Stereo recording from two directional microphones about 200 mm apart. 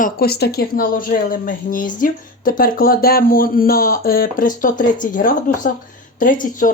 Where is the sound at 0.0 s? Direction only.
50° left (ahead or behind).